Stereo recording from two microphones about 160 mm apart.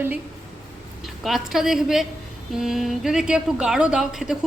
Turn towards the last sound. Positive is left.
turn(degrees=-5)  # may be behind; listen again after turning